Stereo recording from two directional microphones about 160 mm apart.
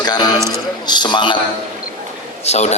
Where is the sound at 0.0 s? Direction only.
25° left (ahead or behind).